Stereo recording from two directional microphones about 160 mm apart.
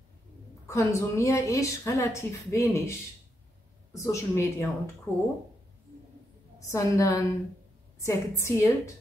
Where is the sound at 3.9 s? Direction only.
20° left (ahead or behind).